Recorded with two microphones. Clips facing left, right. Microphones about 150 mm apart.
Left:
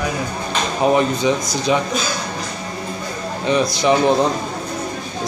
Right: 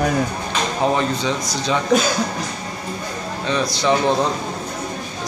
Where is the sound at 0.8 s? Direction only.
15° left (ahead or behind).